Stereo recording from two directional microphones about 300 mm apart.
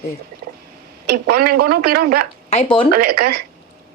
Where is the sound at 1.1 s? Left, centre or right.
Right.